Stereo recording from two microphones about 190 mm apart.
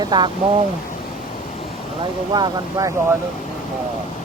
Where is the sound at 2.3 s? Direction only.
20° right (ahead or behind).